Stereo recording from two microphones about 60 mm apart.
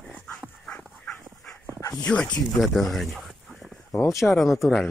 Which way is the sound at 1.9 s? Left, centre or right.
Centre.